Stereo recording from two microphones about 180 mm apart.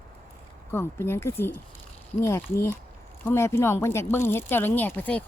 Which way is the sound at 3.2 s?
15° left (ahead or behind).